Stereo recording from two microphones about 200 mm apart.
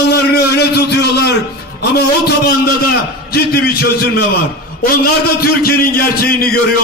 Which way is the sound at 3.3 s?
50° left (ahead or behind).